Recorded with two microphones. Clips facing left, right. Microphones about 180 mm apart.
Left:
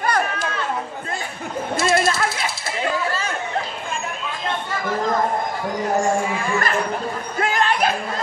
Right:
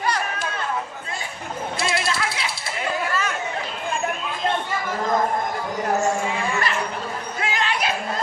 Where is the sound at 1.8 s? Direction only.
45° left (ahead or behind).